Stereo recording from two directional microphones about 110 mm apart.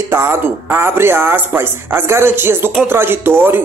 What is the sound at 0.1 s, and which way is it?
Speech, 25° right (ahead or behind).